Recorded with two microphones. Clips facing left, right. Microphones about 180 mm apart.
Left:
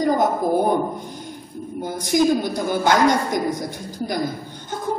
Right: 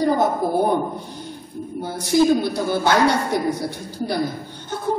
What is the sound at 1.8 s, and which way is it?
A woman's voice, 15° left (ahead or behind).